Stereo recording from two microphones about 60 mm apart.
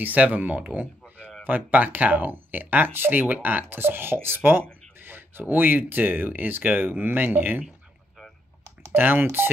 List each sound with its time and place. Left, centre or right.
0.0 s speech: right
8.9 s speech: right